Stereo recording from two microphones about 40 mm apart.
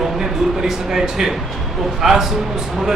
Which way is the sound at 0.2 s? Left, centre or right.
Centre.